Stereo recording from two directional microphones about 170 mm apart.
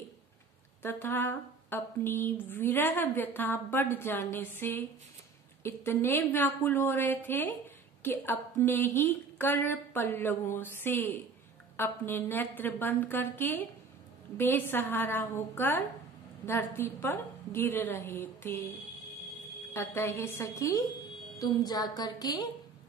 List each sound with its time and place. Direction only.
0.8 s speech: 15° left (ahead or behind)
19.7 s a woman's voice: 15° left (ahead or behind)